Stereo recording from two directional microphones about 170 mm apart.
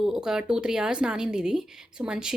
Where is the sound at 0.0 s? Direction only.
5° right (ahead or behind).